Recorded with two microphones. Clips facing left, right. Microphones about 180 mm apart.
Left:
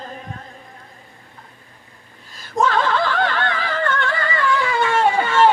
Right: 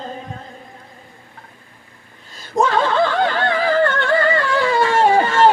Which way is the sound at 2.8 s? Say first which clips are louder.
Right 3 dB; 30° right (ahead or behind).